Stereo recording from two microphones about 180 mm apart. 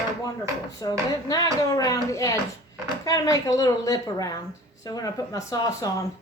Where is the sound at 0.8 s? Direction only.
20° left (ahead or behind).